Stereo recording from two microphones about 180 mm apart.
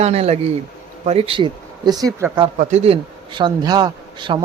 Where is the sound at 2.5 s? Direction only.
35° right (ahead or behind).